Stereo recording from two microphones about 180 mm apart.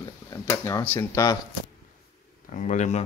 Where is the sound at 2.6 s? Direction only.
40° left (ahead or behind).